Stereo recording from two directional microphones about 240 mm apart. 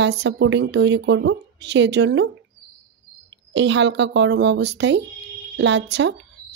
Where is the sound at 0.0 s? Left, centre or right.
Right.